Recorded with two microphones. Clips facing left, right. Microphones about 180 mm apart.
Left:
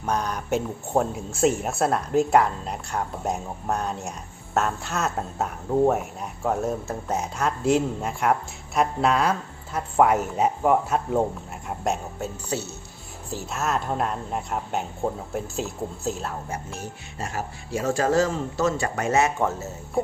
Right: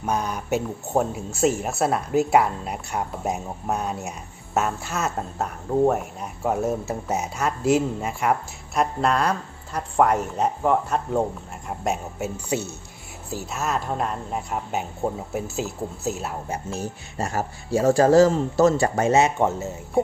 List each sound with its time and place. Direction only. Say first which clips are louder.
0.0 s speech: right 1 dB; 5° right (ahead or behind)
12.5 s speech: right 3 dB; 15° right (ahead or behind)
13.3 s speech: even; centre (ahead or behind)
17.2 s speech: right 5 dB; 35° right (ahead or behind); by 19.6 s 20° right (ahead or behind)